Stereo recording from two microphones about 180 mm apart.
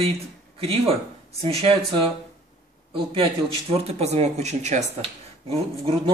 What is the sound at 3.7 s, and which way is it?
Speech, 35° right (ahead or behind).